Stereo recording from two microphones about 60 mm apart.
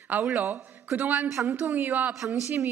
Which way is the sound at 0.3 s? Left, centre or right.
Right.